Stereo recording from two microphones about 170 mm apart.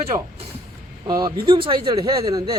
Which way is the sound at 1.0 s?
25° right (ahead or behind).